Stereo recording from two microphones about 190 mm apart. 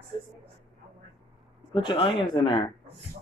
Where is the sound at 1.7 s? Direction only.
25° left (ahead or behind).